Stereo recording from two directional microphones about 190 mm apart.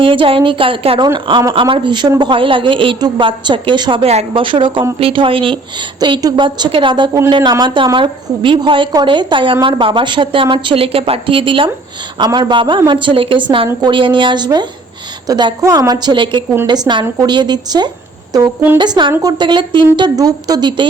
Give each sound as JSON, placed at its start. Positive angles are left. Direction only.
{"t": 0.0, "sound": "a woman's voice", "side_deg": -25}